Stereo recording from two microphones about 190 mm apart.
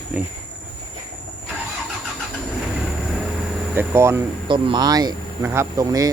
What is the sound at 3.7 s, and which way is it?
Speech, 15° right (ahead or behind).